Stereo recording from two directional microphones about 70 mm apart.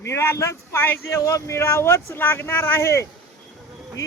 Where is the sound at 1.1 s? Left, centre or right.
Left.